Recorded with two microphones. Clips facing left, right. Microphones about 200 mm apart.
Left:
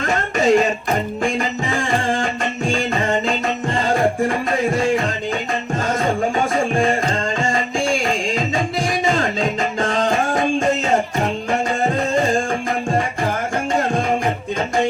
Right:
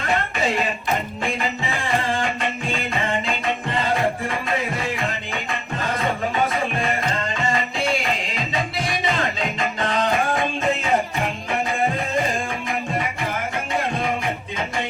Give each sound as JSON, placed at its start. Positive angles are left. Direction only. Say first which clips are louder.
{"t": 0.1, "sound": "music", "louder": "left 7 dB", "side_deg": 45}
{"t": 2.7, "sound": "music", "louder": "left 5 dB", "side_deg": 45}
{"t": 7.5, "sound": "music", "louder": "left 3 dB", "side_deg": 45}